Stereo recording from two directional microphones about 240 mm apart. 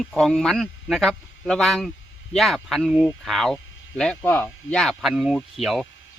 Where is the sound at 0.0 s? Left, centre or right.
Centre.